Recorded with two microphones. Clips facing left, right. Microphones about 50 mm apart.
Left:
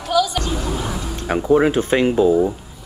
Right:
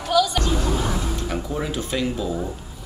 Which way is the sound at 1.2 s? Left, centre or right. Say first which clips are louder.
Left 11 dB; left.